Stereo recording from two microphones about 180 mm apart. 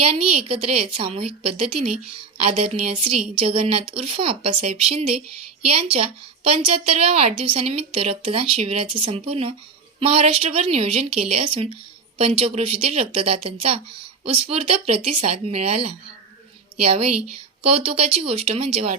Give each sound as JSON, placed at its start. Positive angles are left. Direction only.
{"t": 0.0, "sound": "a woman's voice", "side_deg": -35}
{"t": 17.7, "sound": "a woman's voice", "side_deg": -35}